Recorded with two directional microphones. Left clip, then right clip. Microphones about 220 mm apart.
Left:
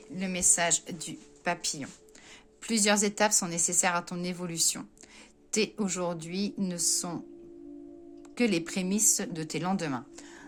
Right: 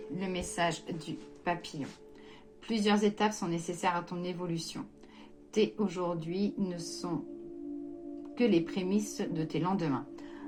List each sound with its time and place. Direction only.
0.2 s a woman's voice: 45° left (ahead or behind)
8.4 s a woman's voice: 55° left (ahead or behind)